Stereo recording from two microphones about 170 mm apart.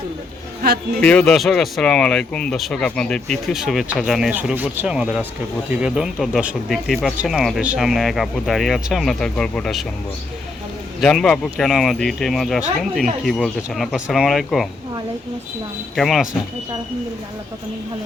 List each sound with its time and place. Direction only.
0.6 s speech: 65° right (ahead or behind)
1.0 s speech: 5° left (ahead or behind)
11.0 s speech: 5° left (ahead or behind)
16.0 s speech: centre (ahead or behind)